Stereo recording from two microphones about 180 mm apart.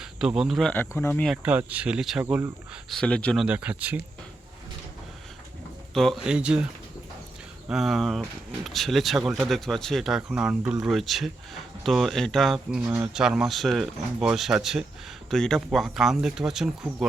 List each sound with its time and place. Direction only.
0.0 s speech: 5° right (ahead or behind)
0.7 s speech: 10° left (ahead or behind)
1.4 s speech: 10° right (ahead or behind)
2.2 s speech: 15° right (ahead or behind)
2.9 s speech: 5° left (ahead or behind)
3.4 s speech: 5° right (ahead or behind)
5.9 s speech: centre (ahead or behind)
7.7 s speech: centre (ahead or behind)